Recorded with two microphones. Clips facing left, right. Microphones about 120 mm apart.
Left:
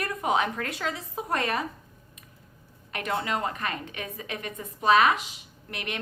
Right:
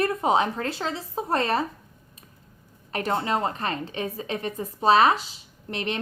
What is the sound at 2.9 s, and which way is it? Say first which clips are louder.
A woman's voice: right 4 dB; 35° right (ahead or behind).